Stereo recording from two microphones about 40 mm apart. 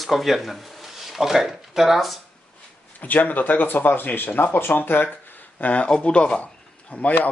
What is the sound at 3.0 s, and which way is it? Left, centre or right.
Speech, left.